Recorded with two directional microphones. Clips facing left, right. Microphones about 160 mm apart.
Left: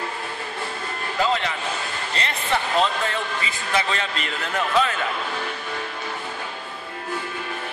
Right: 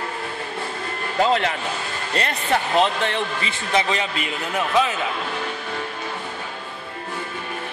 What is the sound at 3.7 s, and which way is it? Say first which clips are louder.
A man's voice: right 3 dB; 15° right (ahead or behind).